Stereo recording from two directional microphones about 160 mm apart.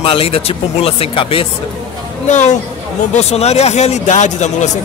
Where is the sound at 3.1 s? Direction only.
40° left (ahead or behind).